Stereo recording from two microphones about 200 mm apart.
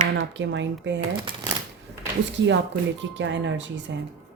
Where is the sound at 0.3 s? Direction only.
65° right (ahead or behind).